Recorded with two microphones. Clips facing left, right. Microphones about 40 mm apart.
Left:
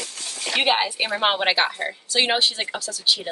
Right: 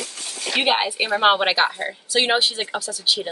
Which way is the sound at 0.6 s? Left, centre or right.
Centre.